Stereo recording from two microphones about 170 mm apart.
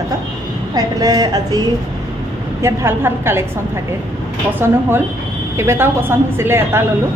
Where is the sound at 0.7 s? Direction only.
20° right (ahead or behind).